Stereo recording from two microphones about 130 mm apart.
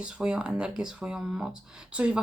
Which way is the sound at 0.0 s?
5° right (ahead or behind).